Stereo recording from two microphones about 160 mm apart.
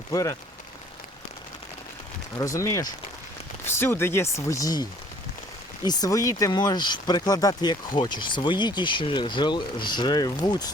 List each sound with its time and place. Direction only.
0.1 s speech: 20° left (ahead or behind)
2.4 s speech: 20° left (ahead or behind)